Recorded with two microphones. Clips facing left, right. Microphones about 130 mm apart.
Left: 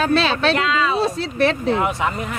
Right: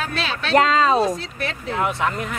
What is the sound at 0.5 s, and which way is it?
Speech, 40° right (ahead or behind).